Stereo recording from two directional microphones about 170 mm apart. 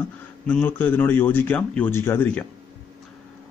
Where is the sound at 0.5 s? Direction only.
10° left (ahead or behind).